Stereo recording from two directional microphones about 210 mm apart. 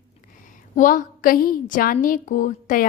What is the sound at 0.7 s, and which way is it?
Speech, 40° left (ahead or behind).